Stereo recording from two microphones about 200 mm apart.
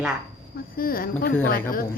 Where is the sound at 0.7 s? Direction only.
45° left (ahead or behind).